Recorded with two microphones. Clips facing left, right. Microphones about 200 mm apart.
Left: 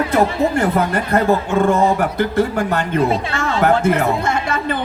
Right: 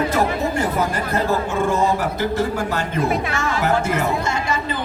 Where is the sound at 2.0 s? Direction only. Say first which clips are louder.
Left 4 dB; 60° left (ahead or behind).